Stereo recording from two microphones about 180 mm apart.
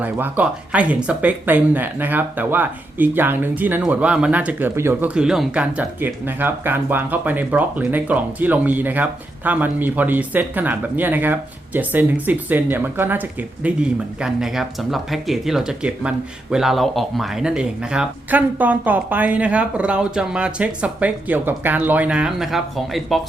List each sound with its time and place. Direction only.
0.0 s speech: 10° right (ahead or behind)